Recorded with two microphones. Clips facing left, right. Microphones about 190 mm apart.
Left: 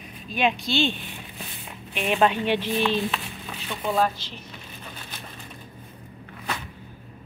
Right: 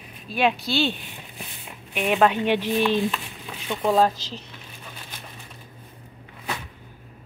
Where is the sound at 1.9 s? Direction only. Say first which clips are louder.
Right 2 dB; 5° right (ahead or behind).